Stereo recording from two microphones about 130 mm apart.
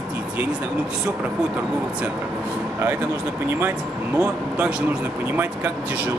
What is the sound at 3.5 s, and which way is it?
Speech, 15° right (ahead or behind).